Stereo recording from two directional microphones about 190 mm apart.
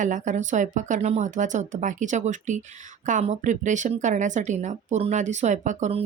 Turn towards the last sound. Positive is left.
turn(degrees=-40)  # may be behind; listen again after turning